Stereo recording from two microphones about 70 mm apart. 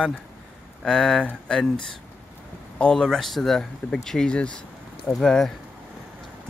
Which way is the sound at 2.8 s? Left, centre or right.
Centre.